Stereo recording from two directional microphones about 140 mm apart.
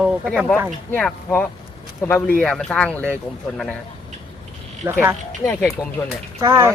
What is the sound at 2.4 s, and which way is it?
Speech, 5° left (ahead or behind).